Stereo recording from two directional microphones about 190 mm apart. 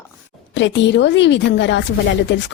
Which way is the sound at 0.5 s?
70° left (ahead or behind).